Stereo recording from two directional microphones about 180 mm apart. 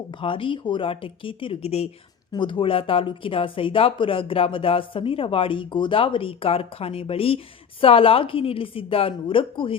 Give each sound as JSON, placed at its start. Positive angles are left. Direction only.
{"t": 0.2, "sound": "speech", "side_deg": 30}